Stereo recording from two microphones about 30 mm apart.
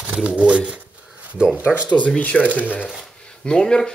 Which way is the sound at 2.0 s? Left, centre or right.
Left.